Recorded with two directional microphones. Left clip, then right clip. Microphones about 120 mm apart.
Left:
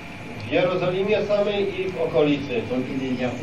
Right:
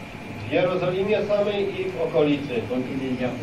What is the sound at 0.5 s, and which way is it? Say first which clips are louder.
Speech: left 1 dB; 25° right (ahead or behind).